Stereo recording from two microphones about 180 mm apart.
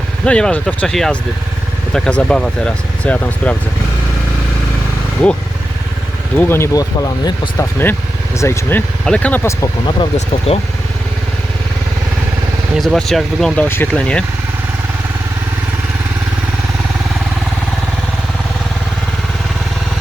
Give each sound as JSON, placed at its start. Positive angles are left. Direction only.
{"t": 0.3, "sound": "speech", "side_deg": 5}
{"t": 6.3, "sound": "speech", "side_deg": 10}
{"t": 10.2, "sound": "speech", "side_deg": 35}
{"t": 12.7, "sound": "speech", "side_deg": 0}